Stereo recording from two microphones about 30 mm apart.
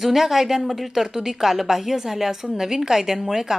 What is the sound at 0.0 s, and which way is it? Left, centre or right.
A woman's voice, centre.